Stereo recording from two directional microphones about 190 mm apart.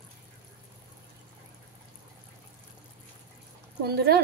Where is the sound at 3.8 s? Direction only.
55° right (ahead or behind).